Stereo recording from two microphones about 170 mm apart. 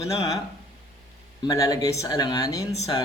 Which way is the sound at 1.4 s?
20° left (ahead or behind).